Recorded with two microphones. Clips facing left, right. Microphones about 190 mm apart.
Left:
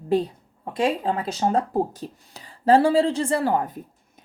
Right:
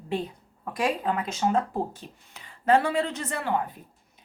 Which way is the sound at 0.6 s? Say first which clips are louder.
Left 4 dB; 25° left (ahead or behind).